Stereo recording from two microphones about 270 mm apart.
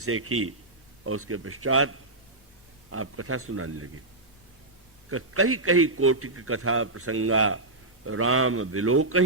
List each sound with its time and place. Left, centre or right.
0.0 s a man's voice: right
5.1 s a man's voice: right